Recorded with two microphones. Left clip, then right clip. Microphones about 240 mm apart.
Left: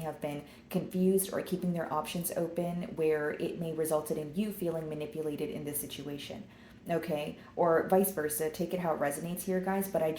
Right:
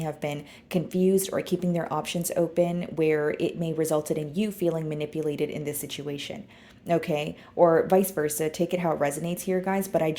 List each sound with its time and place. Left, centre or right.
0.0 s speech: right